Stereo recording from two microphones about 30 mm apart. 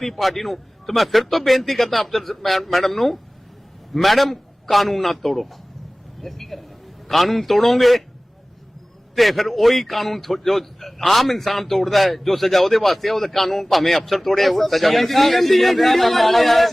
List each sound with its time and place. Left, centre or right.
0.0 s a man's voice: centre
9.1 s a man's voice: centre